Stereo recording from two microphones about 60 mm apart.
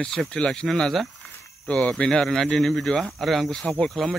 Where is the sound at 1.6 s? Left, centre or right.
Left.